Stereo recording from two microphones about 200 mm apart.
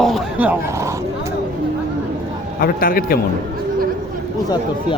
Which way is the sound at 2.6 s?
45° left (ahead or behind).